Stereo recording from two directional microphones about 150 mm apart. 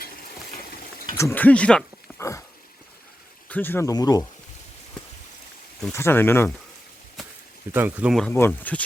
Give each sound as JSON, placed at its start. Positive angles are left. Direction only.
{"t": 1.0, "sound": "speech", "side_deg": 20}
{"t": 3.5, "sound": "speech", "side_deg": 15}
{"t": 5.9, "sound": "speech", "side_deg": 15}
{"t": 7.2, "sound": "a sound", "side_deg": 0}
{"t": 7.7, "sound": "speech", "side_deg": -15}
{"t": 8.3, "sound": "speech", "side_deg": 15}